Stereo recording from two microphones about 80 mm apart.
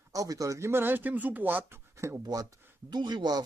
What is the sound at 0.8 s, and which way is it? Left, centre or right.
Speech, right.